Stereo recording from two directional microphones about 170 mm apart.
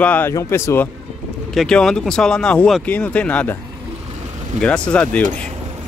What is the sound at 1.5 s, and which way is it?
Speech, centre (ahead or behind).